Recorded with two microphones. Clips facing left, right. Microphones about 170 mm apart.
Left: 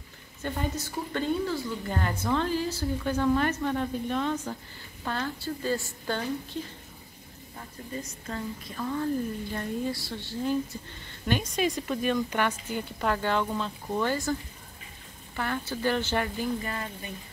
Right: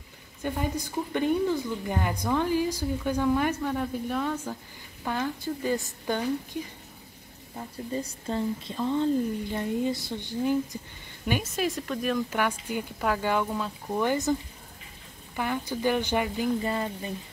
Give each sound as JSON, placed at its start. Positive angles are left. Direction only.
{"t": 0.4, "sound": "a woman's voice", "side_deg": -10}
{"t": 7.5, "sound": "a woman's voice", "side_deg": -30}
{"t": 15.3, "sound": "a woman's voice", "side_deg": -15}
{"t": 16.6, "sound": "a woman's voice", "side_deg": -25}